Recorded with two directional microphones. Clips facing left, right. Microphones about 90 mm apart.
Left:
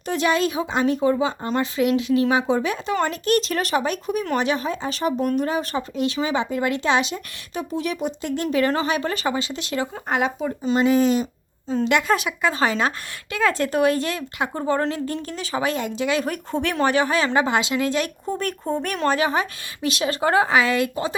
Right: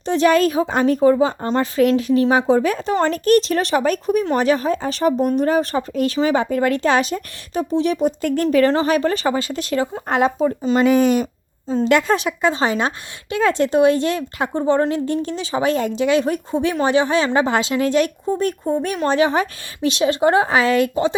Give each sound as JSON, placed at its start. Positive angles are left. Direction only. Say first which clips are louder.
{"t": 0.0, "sound": "a woman's voice", "louder": "right 6 dB", "side_deg": -35}
{"t": 0.3, "sound": "a woman's voice", "louder": "right 6 dB", "side_deg": -45}
{"t": 8.2, "sound": "a woman's voice", "louder": "right 4 dB", "side_deg": -45}
{"t": 8.6, "sound": "speech", "louder": "right 6 dB", "side_deg": -30}
{"t": 11.0, "sound": "speech", "louder": "right 3 dB", "side_deg": -60}
{"t": 11.9, "sound": "speech", "louder": "right 4 dB", "side_deg": -35}
{"t": 18.3, "sound": "speech", "louder": "right 5 dB", "side_deg": -15}
{"t": 19.0, "sound": "speech", "louder": "right 3 dB", "side_deg": -30}